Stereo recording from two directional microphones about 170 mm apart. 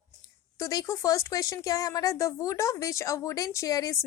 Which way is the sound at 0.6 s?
20° left (ahead or behind).